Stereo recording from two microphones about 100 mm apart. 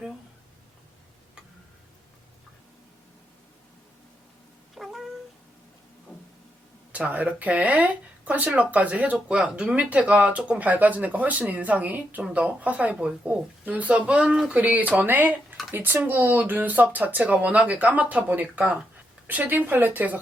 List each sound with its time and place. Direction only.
4.7 s cat: centre (ahead or behind)
6.1 s vehicle: 5° left (ahead or behind)
6.9 s speech: 15° right (ahead or behind)